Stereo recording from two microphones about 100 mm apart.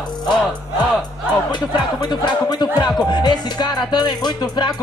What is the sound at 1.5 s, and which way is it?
Speech, 50° left (ahead or behind).